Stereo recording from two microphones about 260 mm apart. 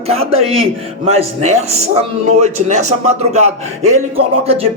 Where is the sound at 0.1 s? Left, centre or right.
Right.